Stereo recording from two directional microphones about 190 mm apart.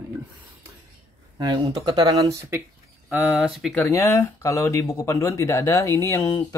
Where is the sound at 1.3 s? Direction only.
20° right (ahead or behind).